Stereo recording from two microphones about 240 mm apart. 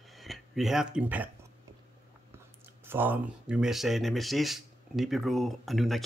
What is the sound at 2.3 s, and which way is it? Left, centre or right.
Speech, centre.